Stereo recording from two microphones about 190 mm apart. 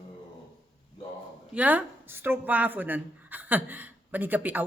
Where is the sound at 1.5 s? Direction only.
10° right (ahead or behind).